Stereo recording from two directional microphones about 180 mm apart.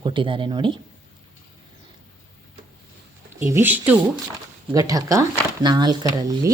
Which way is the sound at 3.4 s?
15° right (ahead or behind).